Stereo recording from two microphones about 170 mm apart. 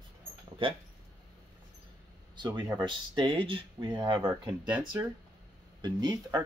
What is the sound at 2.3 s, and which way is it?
Speech, 25° right (ahead or behind).